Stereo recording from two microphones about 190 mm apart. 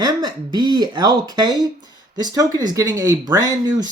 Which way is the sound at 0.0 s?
20° right (ahead or behind).